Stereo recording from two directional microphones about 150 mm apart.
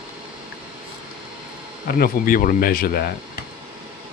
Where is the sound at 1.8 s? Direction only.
75° left (ahead or behind).